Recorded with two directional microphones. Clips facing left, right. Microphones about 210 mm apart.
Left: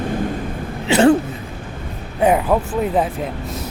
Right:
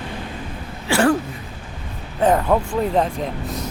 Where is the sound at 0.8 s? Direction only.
20° left (ahead or behind).